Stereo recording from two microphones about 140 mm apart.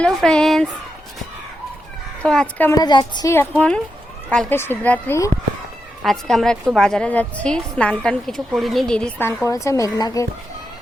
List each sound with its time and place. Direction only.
0.0 s speech: 5° left (ahead or behind)
2.2 s speech: 5° left (ahead or behind)
2.6 s a woman's voice: 25° left (ahead or behind)
3.3 s a woman's voice: 15° left (ahead or behind)
6.0 s a woman's voice: centre (ahead or behind); by 10.2 s 25° left (ahead or behind)